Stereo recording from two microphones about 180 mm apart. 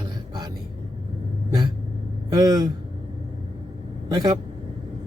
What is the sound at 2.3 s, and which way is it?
Speech, 20° right (ahead or behind).